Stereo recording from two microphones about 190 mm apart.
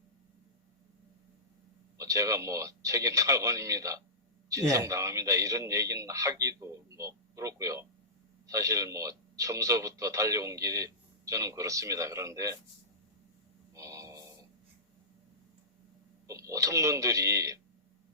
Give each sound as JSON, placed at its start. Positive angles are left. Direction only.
{"t": 2.0, "sound": "speech", "side_deg": -15}
{"t": 13.7, "sound": "a sound", "side_deg": -15}
{"t": 16.2, "sound": "speech", "side_deg": -15}